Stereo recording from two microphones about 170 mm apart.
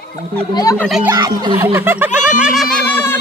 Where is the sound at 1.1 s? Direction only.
25° right (ahead or behind).